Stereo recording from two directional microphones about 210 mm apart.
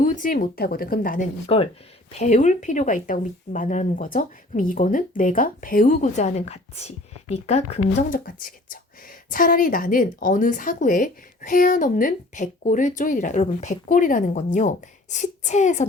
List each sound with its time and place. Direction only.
0.0 s speech: 40° left (ahead or behind)
1.5 s speech: 30° left (ahead or behind)
8.2 s speech: 40° left (ahead or behind)